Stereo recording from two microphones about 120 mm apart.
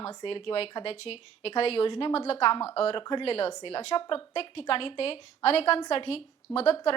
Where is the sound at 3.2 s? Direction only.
55° left (ahead or behind).